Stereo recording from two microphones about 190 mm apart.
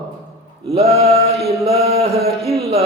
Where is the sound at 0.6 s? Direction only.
30° right (ahead or behind).